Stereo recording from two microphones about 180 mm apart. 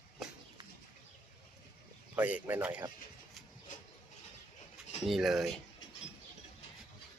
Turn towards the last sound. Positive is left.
turn(degrees=0)  # may be behind; listen again after turning